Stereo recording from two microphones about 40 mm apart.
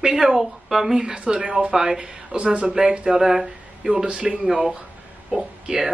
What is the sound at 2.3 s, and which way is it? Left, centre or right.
Speech, right.